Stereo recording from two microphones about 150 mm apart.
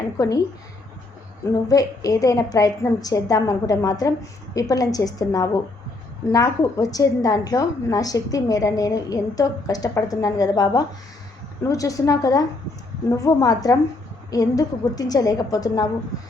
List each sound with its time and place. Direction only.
0.2 s a woman's voice: 20° left (ahead or behind)
1.6 s a woman's voice: 25° left (ahead or behind)